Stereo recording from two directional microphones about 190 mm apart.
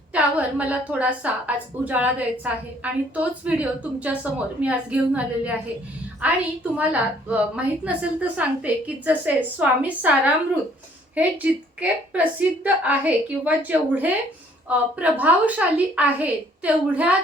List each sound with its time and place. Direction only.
0.1 s a woman's voice: 5° right (ahead or behind)
6.7 s a woman's voice: 10° right (ahead or behind)
11.8 s a woman's voice: 10° right (ahead or behind)